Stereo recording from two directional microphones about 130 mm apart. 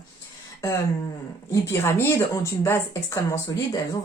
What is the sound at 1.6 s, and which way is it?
Speech, 20° left (ahead or behind).